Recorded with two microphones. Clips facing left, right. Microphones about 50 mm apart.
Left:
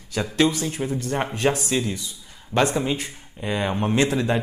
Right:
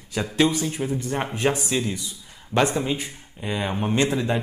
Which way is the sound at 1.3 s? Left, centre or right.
Centre.